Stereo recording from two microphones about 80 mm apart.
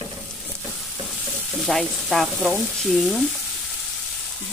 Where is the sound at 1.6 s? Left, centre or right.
Centre.